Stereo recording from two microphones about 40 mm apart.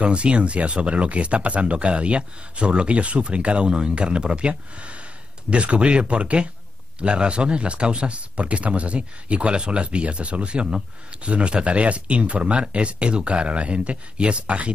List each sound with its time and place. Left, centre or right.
0.0 s speech: right